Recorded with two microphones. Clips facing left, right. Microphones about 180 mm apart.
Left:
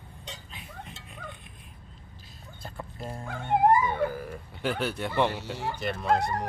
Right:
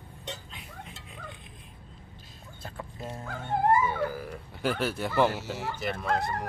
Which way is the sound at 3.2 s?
15° left (ahead or behind).